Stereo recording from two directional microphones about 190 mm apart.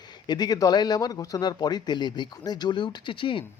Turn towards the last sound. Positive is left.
turn(degrees=25)  # may be behind; listen again after turning